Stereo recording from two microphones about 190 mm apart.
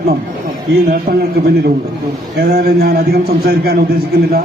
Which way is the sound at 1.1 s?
40° right (ahead or behind).